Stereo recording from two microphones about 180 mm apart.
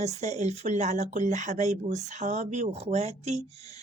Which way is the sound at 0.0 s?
40° right (ahead or behind).